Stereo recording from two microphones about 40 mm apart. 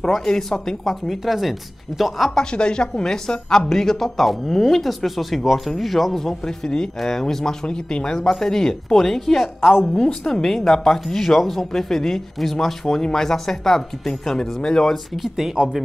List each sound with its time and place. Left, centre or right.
0.1 s speech: centre
2.5 s a woman's voice: left
7.6 s a woman's voice: centre
9.9 s a woman's voice: centre
10.6 s a woman's voice: centre
15.1 s speech: centre